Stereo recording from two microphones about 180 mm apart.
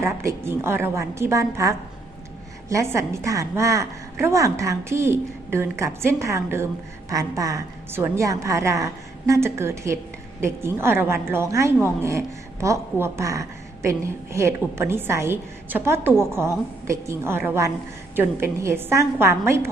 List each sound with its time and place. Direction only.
0.3 s a woman's voice: 15° right (ahead or behind)